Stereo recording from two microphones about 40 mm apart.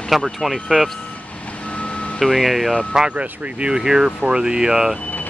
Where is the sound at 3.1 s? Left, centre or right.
Right.